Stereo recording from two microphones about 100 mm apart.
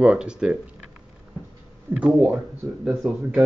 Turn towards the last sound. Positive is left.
turn(degrees=-10)  # may be behind; listen again after turning